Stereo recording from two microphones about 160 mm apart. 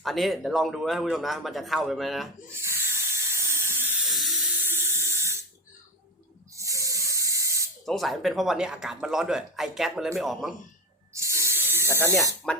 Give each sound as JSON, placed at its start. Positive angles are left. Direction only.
{"t": 0.0, "sound": "speech", "side_deg": 0}
{"t": 2.6, "sound": "hiss", "side_deg": -15}
{"t": 4.6, "sound": "sink", "side_deg": -15}
{"t": 6.5, "sound": "spray", "side_deg": -20}
{"t": 7.9, "sound": "speech", "side_deg": 0}
{"t": 11.1, "sound": "sink", "side_deg": -20}
{"t": 11.9, "sound": "speech", "side_deg": 15}